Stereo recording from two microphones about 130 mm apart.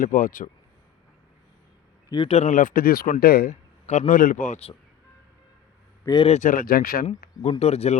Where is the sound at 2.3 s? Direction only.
65° left (ahead or behind).